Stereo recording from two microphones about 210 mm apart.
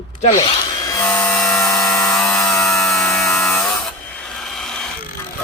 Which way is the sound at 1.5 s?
15° left (ahead or behind).